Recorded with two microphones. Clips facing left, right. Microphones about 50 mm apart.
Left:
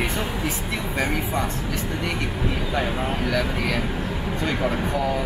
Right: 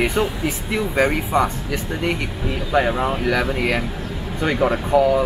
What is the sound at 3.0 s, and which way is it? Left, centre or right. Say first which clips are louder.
Speech: right 4 dB; right.